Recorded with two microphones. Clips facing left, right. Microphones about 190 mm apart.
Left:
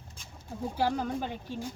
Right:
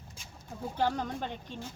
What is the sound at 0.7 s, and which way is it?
Speech, 10° left (ahead or behind).